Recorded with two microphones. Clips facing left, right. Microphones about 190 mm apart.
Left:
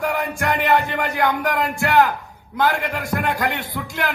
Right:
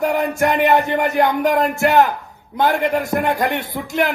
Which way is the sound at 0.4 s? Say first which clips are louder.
Right 4 dB; 20° right (ahead or behind).